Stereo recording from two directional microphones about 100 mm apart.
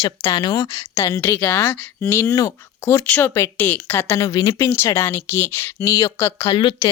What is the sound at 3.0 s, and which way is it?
Speech, 20° left (ahead or behind).